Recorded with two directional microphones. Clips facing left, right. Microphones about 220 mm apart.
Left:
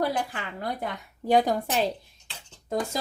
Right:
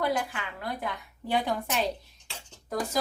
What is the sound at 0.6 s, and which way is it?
Speech, 45° left (ahead or behind).